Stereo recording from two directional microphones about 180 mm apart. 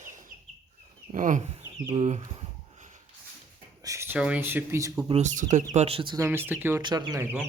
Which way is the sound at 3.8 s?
15° right (ahead or behind).